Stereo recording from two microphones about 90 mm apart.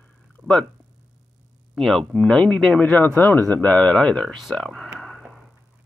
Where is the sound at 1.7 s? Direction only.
Centre (ahead or behind).